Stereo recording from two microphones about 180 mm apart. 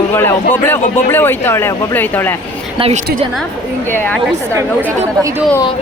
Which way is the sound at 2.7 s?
35° right (ahead or behind).